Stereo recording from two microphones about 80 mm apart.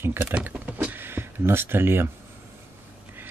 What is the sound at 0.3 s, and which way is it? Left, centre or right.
Speech, centre.